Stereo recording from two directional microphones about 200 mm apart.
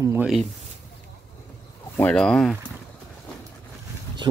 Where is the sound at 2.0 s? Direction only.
5° left (ahead or behind).